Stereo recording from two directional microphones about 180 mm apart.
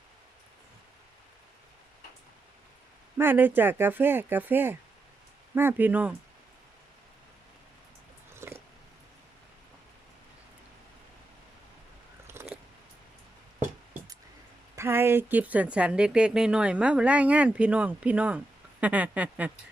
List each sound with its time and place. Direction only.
3.2 s a woman's voice: 10° right (ahead or behind)
8.3 s a sound: 15° right (ahead or behind)
12.3 s biting: 15° right (ahead or behind)
14.8 s a woman's voice: 15° right (ahead or behind)